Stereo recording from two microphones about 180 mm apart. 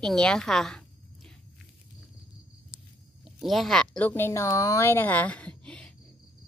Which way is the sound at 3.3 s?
Centre (ahead or behind).